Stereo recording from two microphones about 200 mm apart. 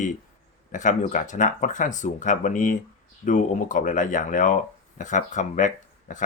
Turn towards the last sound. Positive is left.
turn(degrees=40)  # may be behind; listen again after turning